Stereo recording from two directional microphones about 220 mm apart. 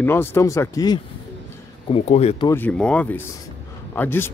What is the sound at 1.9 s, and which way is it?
Speech, 30° left (ahead or behind).